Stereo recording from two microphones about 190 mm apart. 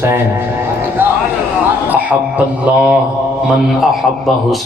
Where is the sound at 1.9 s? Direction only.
10° right (ahead or behind).